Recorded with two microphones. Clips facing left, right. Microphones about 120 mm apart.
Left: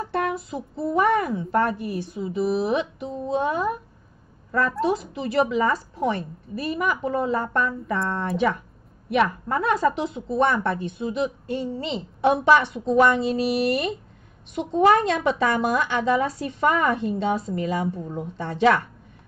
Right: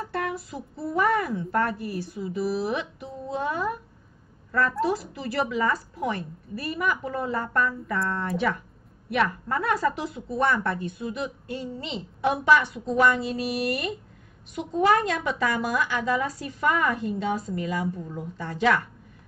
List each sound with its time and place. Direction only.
0.0 s child singing: 20° left (ahead or behind)
0.5 s a woman's voice: 20° left (ahead or behind)